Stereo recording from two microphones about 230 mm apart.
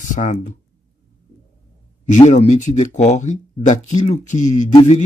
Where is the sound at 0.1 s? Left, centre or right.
Left.